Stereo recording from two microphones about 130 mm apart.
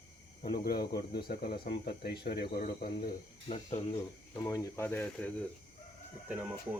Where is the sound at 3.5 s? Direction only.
55° left (ahead or behind).